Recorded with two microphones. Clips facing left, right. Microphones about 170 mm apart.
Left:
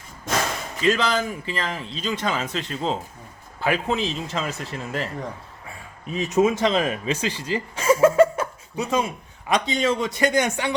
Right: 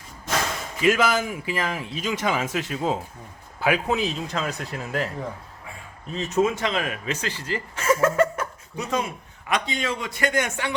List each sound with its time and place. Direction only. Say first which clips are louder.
0.8 s speech: right 1 dB; 10° right (ahead or behind)
6.1 s speech: left 3 dB; 15° left (ahead or behind)
6.6 s speech: left 5 dB; 25° left (ahead or behind)
7.2 s speech: left 3 dB; 15° left (ahead or behind)
8.4 s chuckle: left 4 dB; 30° left (ahead or behind)
9.5 s a man's voice: left 5 dB; 30° left (ahead or behind)
10.2 s speech: left 4 dB; 20° left (ahead or behind)